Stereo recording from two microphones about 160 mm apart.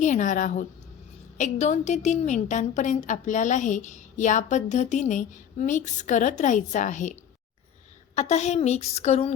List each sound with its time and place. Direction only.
0.0 s a woman's voice: 50° left (ahead or behind)
8.1 s a woman's voice: 45° left (ahead or behind)